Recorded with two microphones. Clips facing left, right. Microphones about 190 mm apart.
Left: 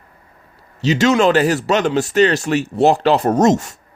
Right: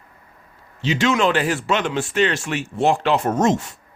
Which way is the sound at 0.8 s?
40° left (ahead or behind).